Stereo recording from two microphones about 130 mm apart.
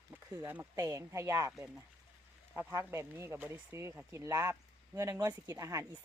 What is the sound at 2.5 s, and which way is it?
Speech, 20° right (ahead or behind).